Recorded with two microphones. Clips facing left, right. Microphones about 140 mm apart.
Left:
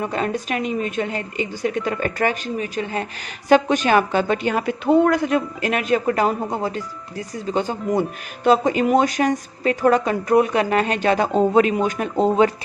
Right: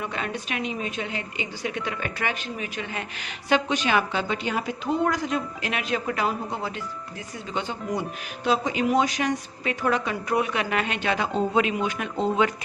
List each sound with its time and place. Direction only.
0.0 s a woman's voice: 40° left (ahead or behind)